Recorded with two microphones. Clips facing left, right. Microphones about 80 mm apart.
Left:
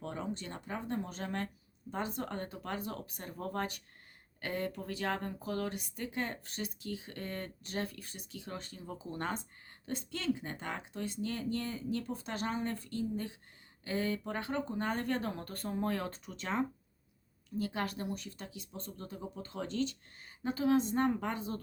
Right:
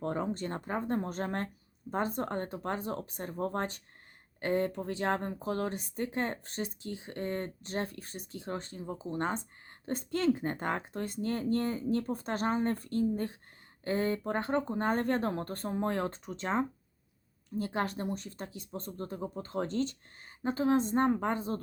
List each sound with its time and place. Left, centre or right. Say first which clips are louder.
0.0 s speech: right 6 dB; right
9.8 s speech: right 6 dB; right